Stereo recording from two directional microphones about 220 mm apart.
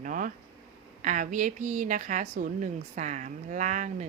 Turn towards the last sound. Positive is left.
turn(degrees=-35)  # may be behind; listen again after turning